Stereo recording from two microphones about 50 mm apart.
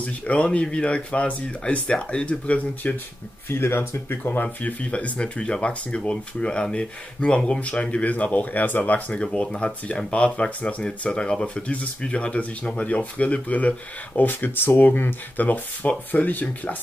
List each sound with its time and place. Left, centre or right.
0.0 s speech: left
3.5 s speech: left
4.2 s speech: left